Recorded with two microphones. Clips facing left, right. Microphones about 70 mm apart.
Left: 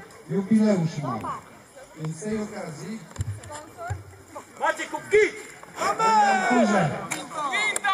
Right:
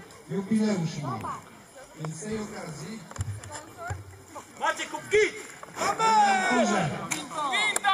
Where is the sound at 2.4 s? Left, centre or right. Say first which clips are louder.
Left 4 dB; centre.